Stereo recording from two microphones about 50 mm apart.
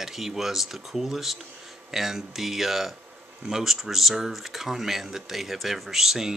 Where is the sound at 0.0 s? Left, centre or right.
Centre.